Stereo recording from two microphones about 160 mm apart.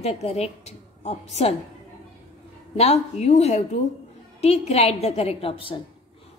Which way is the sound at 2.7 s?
40° left (ahead or behind).